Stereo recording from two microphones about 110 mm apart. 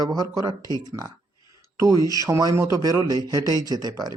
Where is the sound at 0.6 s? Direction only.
30° left (ahead or behind).